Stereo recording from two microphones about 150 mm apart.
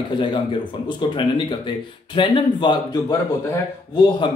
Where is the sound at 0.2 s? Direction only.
30° left (ahead or behind).